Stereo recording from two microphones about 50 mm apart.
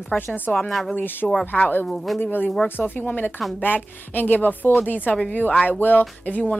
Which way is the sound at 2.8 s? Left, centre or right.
Left.